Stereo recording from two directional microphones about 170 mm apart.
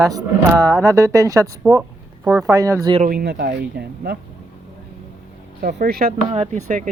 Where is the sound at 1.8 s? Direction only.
5° right (ahead or behind).